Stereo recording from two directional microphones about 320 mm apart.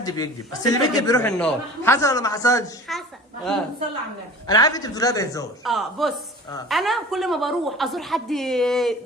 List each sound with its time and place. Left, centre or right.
0.0 s a man's voice: centre
5.6 s a woman's voice: centre